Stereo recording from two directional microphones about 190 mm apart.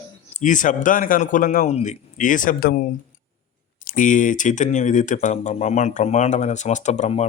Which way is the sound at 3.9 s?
45° left (ahead or behind).